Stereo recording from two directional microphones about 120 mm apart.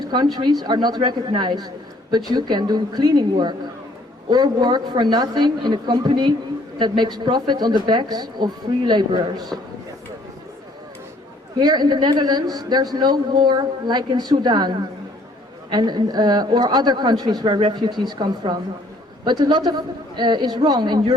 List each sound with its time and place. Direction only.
0.1 s a man's voice: 35° right (ahead or behind)
11.6 s a man's voice: 35° right (ahead or behind)